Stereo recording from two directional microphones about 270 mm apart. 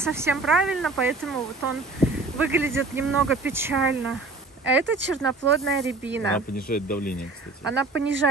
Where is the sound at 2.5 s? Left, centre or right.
Centre.